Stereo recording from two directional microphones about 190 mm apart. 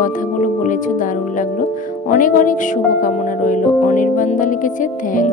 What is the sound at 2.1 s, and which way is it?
Speech, 45° left (ahead or behind).